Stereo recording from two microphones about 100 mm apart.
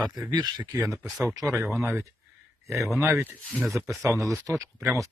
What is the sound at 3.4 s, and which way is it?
Speech, 5° left (ahead or behind).